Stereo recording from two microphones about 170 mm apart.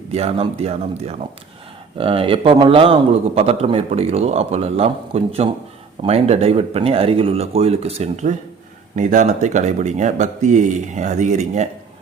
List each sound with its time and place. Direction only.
0.1 s a man's voice: 35° right (ahead or behind)